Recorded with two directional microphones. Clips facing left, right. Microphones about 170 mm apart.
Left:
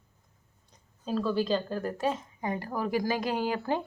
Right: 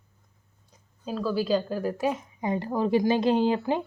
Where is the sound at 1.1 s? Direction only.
5° right (ahead or behind).